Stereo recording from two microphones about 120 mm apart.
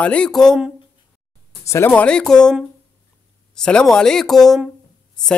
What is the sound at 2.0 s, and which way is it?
Speech, 5° left (ahead or behind).